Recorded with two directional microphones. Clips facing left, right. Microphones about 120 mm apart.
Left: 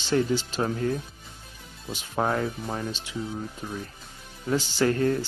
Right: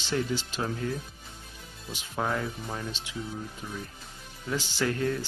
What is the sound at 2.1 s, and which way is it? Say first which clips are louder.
Speech: left 4 dB; 45° left (ahead or behind).